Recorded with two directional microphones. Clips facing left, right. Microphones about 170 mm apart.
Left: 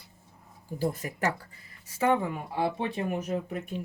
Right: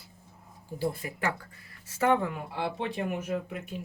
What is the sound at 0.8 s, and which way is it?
Speech, 45° left (ahead or behind).